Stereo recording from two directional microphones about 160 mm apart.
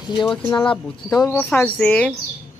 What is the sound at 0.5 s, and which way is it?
Speech, 30° left (ahead or behind).